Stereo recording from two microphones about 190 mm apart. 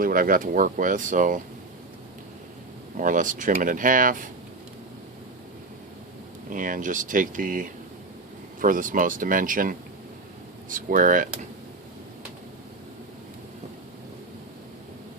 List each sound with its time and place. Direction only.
0.0 s speech: 45° right (ahead or behind)
3.0 s speech: 45° right (ahead or behind)
6.5 s speech: 45° right (ahead or behind)